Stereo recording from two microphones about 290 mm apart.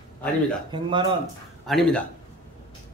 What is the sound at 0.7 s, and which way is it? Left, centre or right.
Speech, centre.